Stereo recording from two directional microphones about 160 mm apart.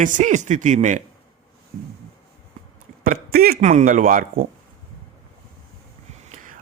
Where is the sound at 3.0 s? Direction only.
70° right (ahead or behind).